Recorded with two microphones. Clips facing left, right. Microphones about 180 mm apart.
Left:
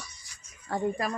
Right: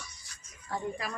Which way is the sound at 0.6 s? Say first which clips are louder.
Left 6 dB; 55° left (ahead or behind).